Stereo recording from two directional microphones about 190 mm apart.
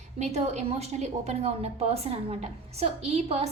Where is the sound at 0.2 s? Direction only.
35° right (ahead or behind).